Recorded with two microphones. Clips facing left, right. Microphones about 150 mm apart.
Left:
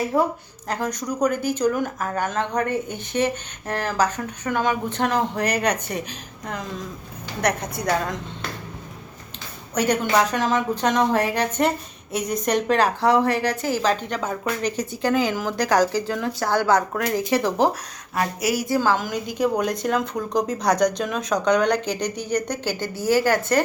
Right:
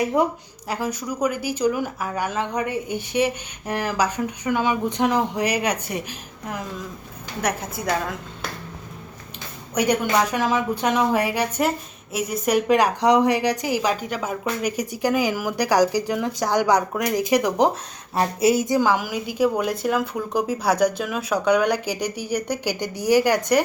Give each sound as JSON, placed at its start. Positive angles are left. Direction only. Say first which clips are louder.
{"t": 0.1, "sound": "speech", "louder": "left 1 dB", "side_deg": -20}
{"t": 0.7, "sound": "a woman's voice", "louder": "left 1 dB", "side_deg": -10}
{"t": 9.7, "sound": "a woman's voice", "louder": "even", "side_deg": -10}
{"t": 18.1, "sound": "a woman's voice", "louder": "right 4 dB", "side_deg": -30}